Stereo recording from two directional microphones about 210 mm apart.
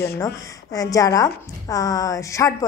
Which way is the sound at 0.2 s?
15° left (ahead or behind).